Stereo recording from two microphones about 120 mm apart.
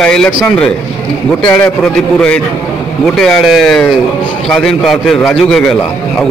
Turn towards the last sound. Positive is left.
turn(degrees=0)  # may be behind; listen again after turning